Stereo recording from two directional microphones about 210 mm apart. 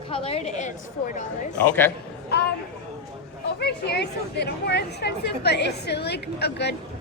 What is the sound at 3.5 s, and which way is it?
Speech, 50° left (ahead or behind).